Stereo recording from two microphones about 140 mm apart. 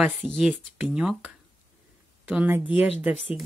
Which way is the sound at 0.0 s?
Centre (ahead or behind).